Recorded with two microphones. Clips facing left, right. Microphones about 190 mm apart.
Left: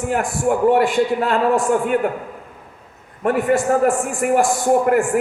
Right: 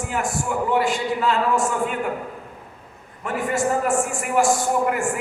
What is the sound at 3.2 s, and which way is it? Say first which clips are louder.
A man's voice: left 6 dB; 55° left (ahead or behind).